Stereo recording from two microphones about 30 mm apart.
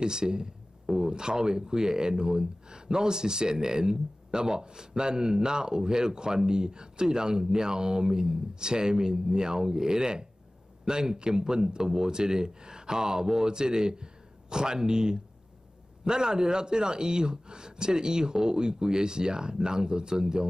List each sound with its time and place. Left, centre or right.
0.0 s speech: right